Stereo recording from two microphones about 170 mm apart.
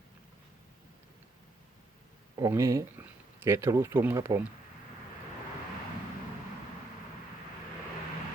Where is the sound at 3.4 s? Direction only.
15° right (ahead or behind).